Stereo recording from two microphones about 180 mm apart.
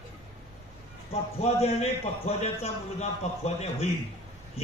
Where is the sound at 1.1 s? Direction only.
35° left (ahead or behind).